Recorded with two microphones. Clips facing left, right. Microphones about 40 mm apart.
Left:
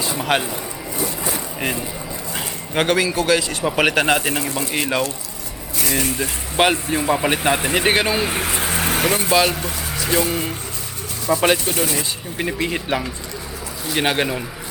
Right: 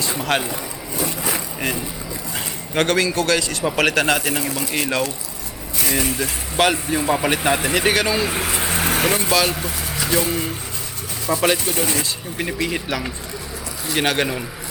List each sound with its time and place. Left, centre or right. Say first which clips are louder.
0.2 s speech: left 2 dB; centre
2.3 s speech: even; centre
6.6 s speech: left 1 dB; centre
7.9 s speech: left 1 dB; left
8.7 s vehicle: even; centre
9.3 s speech: left 4 dB; centre
9.6 s vehicle: even; centre
10.1 s speech: left 1 dB; centre
12.9 s speech: left 3 dB; left
13.9 s speech: even; centre